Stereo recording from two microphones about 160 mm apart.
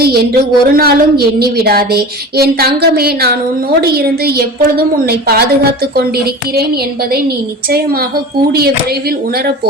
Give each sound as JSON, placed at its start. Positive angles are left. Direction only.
{"t": 0.0, "sound": "speech", "side_deg": -75}
{"t": 6.0, "sound": "music", "side_deg": -80}
{"t": 8.5, "sound": "speech", "side_deg": -75}